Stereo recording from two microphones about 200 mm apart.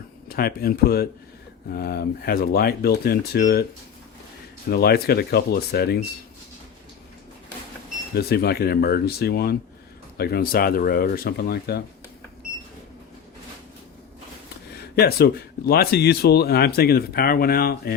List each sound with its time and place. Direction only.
0.3 s speech: 50° left (ahead or behind)
4.7 s speech: 50° left (ahead or behind)
8.1 s speech: 50° left (ahead or behind)
14.8 s speech: 50° left (ahead or behind)